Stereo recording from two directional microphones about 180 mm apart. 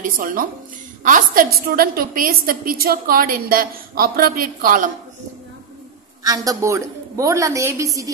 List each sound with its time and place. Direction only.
0.0 s a woman's voice: 50° right (ahead or behind)
6.2 s a woman's voice: 20° right (ahead or behind)